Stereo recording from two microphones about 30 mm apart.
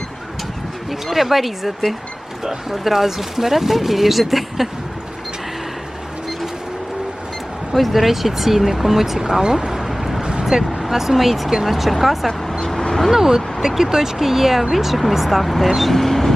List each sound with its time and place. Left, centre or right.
0.9 s speech: centre
2.4 s speech: centre
7.8 s speech: centre
9.8 s a sound: centre
10.4 s speech: centre
15.4 s speech: centre